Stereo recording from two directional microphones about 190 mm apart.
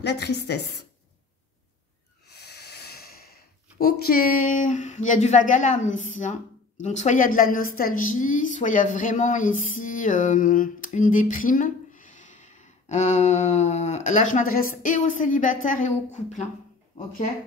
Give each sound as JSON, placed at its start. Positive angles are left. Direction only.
{"t": 0.0, "sound": "a woman's voice", "side_deg": 60}
{"t": 2.3, "sound": "speech", "side_deg": 60}